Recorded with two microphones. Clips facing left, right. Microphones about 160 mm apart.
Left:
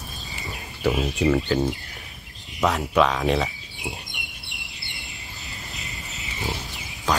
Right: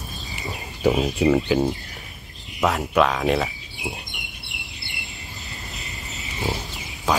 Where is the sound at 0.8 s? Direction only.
15° right (ahead or behind); by 3.5 s centre (ahead or behind).